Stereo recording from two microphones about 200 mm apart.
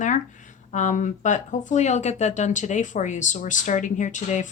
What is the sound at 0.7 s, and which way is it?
Speech, 40° left (ahead or behind).